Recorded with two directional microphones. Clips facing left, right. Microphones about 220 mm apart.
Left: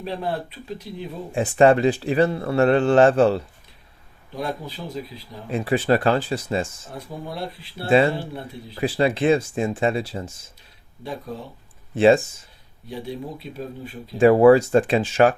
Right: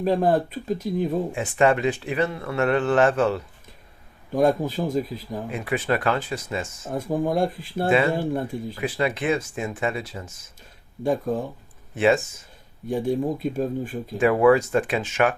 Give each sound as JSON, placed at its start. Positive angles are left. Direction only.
{"t": 0.0, "sound": "speech", "side_deg": -45}
{"t": 1.3, "sound": "speech", "side_deg": 30}
{"t": 4.3, "sound": "speech", "side_deg": -45}
{"t": 5.5, "sound": "speech", "side_deg": 30}
{"t": 6.8, "sound": "speech", "side_deg": -50}
{"t": 8.8, "sound": "speech", "side_deg": 30}
{"t": 11.0, "sound": "speech", "side_deg": -45}
{"t": 11.9, "sound": "speech", "side_deg": 30}
{"t": 12.9, "sound": "speech", "side_deg": -50}
{"t": 14.2, "sound": "speech", "side_deg": 30}